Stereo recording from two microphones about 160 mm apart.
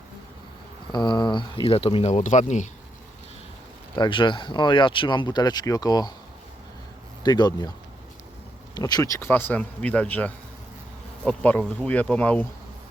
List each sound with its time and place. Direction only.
0.9 s speech: 25° left (ahead or behind); by 2.6 s 50° left (ahead or behind)
3.9 s speech: 30° left (ahead or behind)
7.2 s speech: 25° left (ahead or behind)
8.7 s speech: 25° left (ahead or behind)